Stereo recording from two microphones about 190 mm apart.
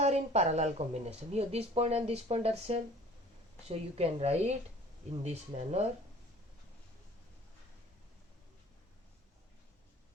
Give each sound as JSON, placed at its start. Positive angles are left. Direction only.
{"t": 0.0, "sound": "speech", "side_deg": -35}